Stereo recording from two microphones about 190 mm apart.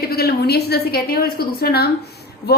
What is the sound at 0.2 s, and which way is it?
A woman's voice, 55° left (ahead or behind).